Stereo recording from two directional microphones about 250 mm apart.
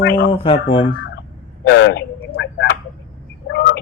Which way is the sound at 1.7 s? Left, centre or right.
Left.